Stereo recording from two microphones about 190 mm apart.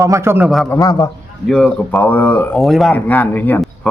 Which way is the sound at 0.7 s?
20° left (ahead or behind).